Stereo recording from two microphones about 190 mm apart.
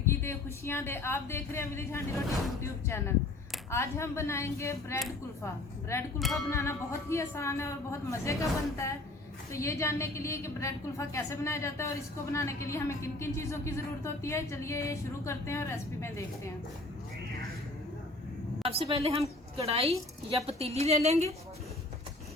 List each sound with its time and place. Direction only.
0.0 s a woman's voice: 15° left (ahead or behind)
6.1 s music: centre (ahead or behind)
6.5 s a woman's voice: 15° left (ahead or behind)
18.7 s a woman's voice: 30° right (ahead or behind)